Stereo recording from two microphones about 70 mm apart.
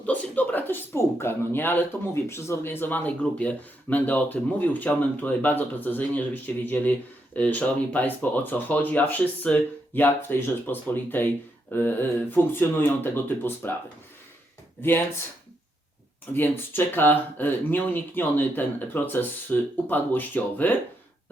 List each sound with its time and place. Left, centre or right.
0.0 s a sound: left
0.9 s speech: left
2.2 s speech: left
14.8 s speech: left
16.3 s speech: left